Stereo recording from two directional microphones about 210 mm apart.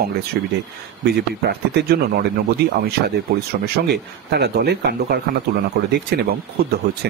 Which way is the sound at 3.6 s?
50° right (ahead or behind).